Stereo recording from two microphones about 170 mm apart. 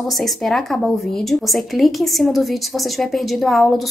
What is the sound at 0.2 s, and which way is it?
A woman's voice, centre (ahead or behind).